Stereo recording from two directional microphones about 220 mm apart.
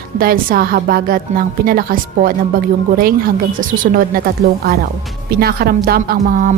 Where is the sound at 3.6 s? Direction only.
40° right (ahead or behind).